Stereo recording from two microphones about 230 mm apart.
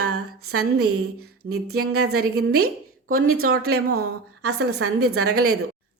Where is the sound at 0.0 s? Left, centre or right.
Right.